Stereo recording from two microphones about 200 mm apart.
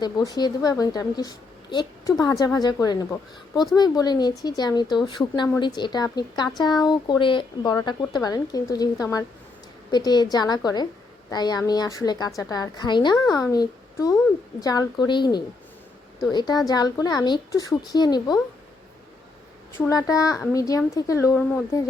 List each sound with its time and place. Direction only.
0.0 s a woman's voice: 20° left (ahead or behind)
19.7 s a woman's voice: 15° left (ahead or behind)